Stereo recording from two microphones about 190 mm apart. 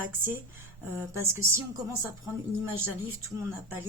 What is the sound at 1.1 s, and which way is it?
Speech, 15° right (ahead or behind).